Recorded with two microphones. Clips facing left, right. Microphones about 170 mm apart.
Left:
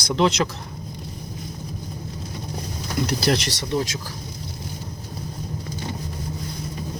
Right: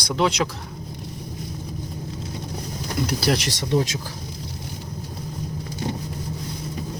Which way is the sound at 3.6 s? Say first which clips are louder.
Right 3 dB; 20° right (ahead or behind).